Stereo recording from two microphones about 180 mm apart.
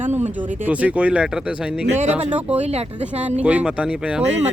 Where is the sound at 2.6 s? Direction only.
35° right (ahead or behind).